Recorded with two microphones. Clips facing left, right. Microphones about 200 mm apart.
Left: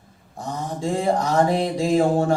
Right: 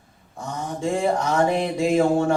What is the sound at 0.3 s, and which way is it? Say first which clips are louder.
Mantra: left 1 dB; 35° left (ahead or behind).